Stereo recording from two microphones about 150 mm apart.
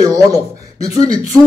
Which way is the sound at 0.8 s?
45° left (ahead or behind).